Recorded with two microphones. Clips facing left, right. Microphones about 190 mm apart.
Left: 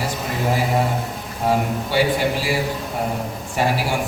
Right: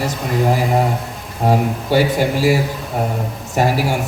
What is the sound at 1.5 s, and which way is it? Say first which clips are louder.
A man's voice: right 4 dB; 45° right (ahead or behind).